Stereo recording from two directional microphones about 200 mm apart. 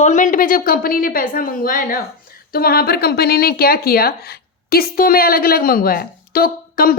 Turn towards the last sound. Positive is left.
turn(degrees=45)  # may be behind; listen again after turning